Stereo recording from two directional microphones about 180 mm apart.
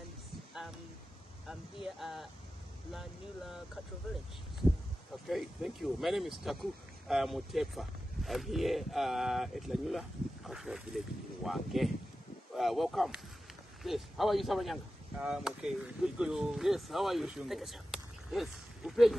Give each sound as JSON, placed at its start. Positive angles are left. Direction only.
{"t": 1.5, "sound": "speech", "side_deg": 0}
{"t": 5.3, "sound": "speech", "side_deg": -5}